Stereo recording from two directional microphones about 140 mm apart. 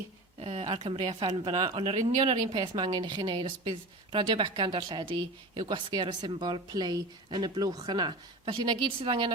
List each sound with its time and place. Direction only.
0.3 s a woman's voice: 50° right (ahead or behind)